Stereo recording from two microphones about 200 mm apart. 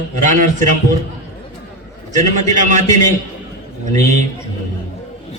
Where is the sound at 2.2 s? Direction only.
35° right (ahead or behind).